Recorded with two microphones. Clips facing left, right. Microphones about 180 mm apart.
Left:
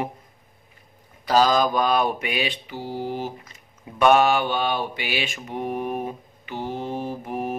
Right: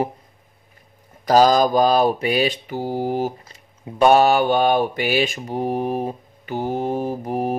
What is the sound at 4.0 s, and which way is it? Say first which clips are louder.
Mantra: right 3 dB; 35° right (ahead or behind).